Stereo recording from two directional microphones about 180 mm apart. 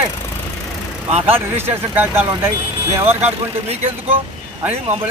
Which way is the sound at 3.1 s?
35° right (ahead or behind).